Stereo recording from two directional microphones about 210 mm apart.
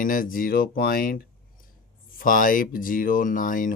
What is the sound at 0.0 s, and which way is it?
Speech, 40° left (ahead or behind).